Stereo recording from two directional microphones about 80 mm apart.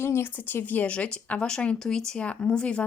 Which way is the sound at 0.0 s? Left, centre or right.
Left.